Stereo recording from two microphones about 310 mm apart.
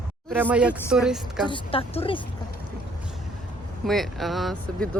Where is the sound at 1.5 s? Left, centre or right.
Centre.